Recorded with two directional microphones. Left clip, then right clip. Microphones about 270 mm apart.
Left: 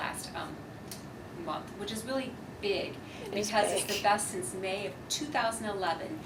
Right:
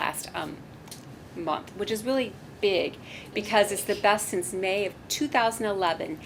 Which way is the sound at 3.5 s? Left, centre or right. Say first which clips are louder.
Right 6 dB; right.